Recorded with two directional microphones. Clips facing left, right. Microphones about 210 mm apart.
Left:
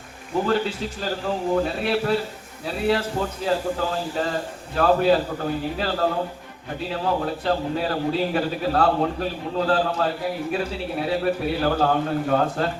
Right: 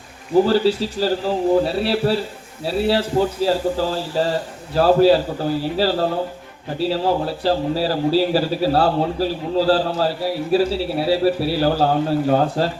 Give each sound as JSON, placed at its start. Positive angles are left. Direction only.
{"t": 0.4, "sound": "a man's voice", "side_deg": -30}